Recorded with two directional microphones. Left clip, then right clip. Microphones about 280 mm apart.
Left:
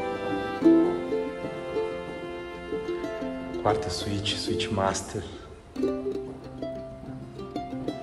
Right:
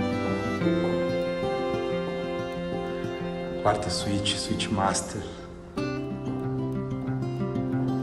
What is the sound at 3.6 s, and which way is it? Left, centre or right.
Speech, centre.